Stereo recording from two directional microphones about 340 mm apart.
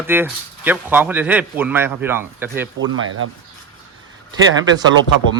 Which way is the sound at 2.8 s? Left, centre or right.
Right.